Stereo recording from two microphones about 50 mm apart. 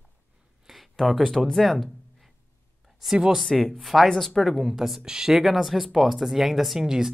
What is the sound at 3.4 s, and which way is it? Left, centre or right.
Speech, centre.